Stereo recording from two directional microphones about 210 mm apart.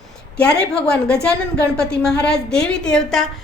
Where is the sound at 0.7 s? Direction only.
5° left (ahead or behind).